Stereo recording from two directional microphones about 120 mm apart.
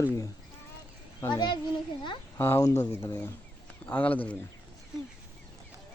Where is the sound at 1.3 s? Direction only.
40° left (ahead or behind).